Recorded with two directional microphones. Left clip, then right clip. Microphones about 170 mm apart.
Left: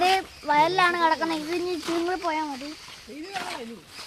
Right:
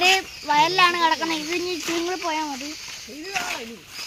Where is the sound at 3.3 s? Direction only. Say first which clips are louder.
Right 5 dB; 35° right (ahead or behind).